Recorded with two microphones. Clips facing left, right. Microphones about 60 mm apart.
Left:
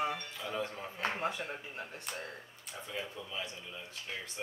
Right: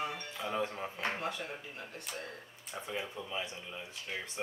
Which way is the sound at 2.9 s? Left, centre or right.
Centre.